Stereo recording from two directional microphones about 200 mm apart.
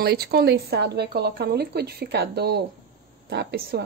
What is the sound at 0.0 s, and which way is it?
Speech, 50° right (ahead or behind).